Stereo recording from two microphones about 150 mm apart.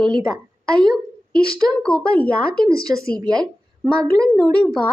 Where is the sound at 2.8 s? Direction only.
20° right (ahead or behind).